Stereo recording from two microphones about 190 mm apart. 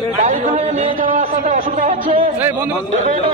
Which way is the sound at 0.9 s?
45° right (ahead or behind).